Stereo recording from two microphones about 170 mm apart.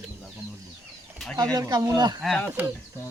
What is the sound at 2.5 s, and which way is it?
Speech, 10° right (ahead or behind).